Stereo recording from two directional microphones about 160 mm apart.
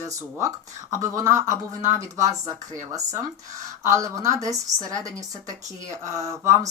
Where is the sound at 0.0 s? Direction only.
20° right (ahead or behind).